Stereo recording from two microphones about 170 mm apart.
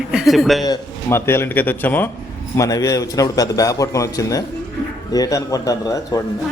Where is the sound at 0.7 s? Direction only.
15° left (ahead or behind).